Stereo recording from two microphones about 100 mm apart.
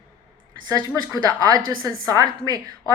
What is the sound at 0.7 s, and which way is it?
A woman's voice, 40° right (ahead or behind).